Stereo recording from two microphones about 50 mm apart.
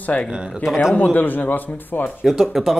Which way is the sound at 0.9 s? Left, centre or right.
Left.